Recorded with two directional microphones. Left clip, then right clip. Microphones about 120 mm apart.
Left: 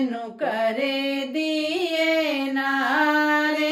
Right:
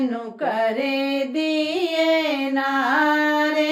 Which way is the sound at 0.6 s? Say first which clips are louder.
Right 2 dB; 15° right (ahead or behind).